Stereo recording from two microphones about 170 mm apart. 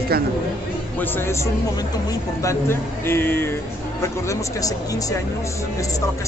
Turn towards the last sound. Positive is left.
turn(degrees=20)  # may be behind; listen again after turning